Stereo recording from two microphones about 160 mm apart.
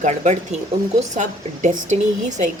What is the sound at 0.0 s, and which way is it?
A woman's voice, 45° right (ahead or behind).